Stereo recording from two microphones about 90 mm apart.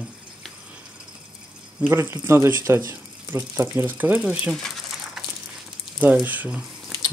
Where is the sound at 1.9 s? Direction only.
25° right (ahead or behind).